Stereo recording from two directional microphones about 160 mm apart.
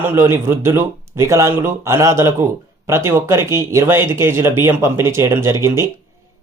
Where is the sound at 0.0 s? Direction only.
15° right (ahead or behind).